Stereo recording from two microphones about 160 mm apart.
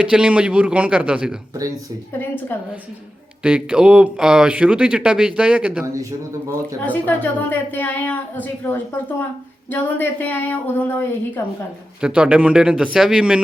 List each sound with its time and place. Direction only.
0.0 s speech: 5° right (ahead or behind)
3.4 s speech: 5° right (ahead or behind)
5.8 s speech: 20° right (ahead or behind)
6.8 s a woman's voice: 10° left (ahead or behind)
11.9 s speech: 5° right (ahead or behind)